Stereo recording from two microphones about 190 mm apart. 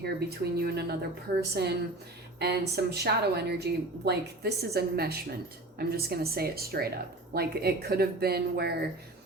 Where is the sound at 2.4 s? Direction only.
60° right (ahead or behind).